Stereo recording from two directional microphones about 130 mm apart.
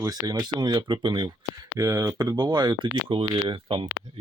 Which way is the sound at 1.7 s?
25° right (ahead or behind).